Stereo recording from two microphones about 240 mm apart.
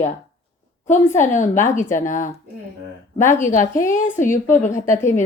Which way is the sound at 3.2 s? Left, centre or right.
Centre.